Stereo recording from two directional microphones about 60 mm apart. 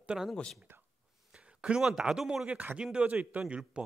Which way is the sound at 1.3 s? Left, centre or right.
Centre.